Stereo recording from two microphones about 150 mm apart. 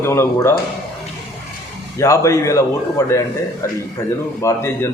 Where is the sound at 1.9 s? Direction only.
20° left (ahead or behind).